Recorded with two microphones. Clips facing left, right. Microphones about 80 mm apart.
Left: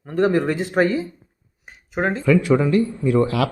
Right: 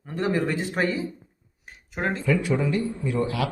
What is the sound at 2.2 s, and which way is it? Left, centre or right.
Speech, left.